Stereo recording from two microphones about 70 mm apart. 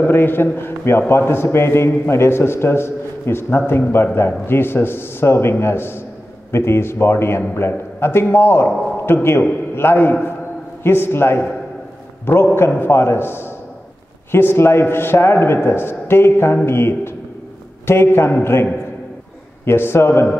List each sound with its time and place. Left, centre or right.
0.0 s a man's voice: left
12.5 s a man's voice: left